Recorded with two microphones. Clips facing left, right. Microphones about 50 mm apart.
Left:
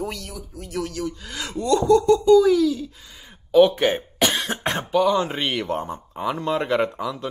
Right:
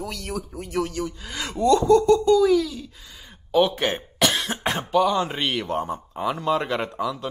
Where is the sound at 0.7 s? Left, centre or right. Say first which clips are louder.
Right 1 dB; centre.